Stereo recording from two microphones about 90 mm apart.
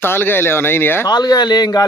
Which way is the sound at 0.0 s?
25° left (ahead or behind).